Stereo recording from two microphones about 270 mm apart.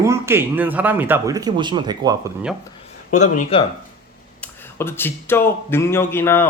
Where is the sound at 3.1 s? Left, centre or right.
Left.